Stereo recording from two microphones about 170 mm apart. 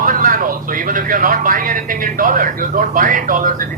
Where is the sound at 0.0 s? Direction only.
55° right (ahead or behind).